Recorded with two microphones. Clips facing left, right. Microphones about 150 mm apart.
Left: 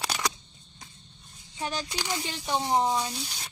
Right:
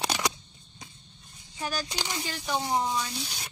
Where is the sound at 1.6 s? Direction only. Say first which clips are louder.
Even; 25° left (ahead or behind).